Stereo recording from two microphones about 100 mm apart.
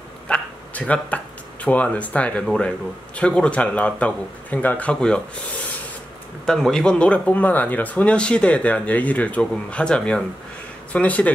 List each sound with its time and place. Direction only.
0.3 s speech: 10° left (ahead or behind)
2.4 s speech: 5° left (ahead or behind)
6.4 s speech: 5° left (ahead or behind)